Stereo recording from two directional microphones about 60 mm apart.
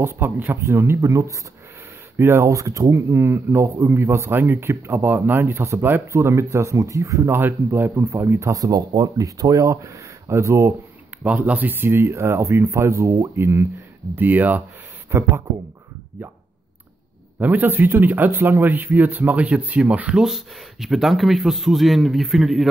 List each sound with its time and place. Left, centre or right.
0.0 s speech: right
0.5 s speech: right
2.1 s speech: right
2.5 s speech: right
7.2 s speech: right
8.4 s speech: right
11.2 s speech: right
13.4 s speech: right
14.1 s speech: right
15.0 s speech: right
17.4 s speech: right
20.2 s a man's voice: centre